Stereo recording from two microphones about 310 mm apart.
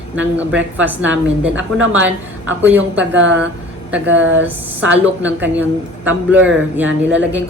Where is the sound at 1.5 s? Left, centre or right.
Right.